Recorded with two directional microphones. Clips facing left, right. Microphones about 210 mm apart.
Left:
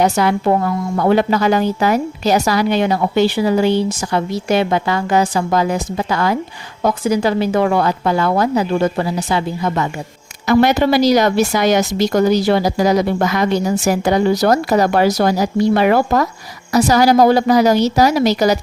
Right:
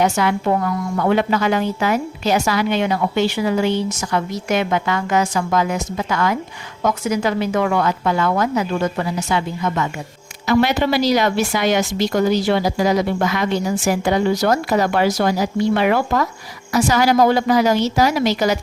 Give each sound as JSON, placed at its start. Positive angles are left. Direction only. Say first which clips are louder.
{"t": 0.0, "sound": "a woman's voice", "louder": "left 3 dB", "side_deg": 35}
{"t": 10.4, "sound": "a woman's voice", "louder": "left 4 dB", "side_deg": 45}